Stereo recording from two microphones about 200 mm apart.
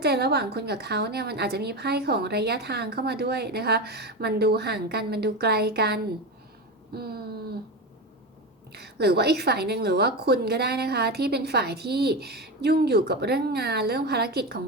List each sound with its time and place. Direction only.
0.0 s a woman's voice: 55° right (ahead or behind)
8.7 s a woman's voice: 55° right (ahead or behind)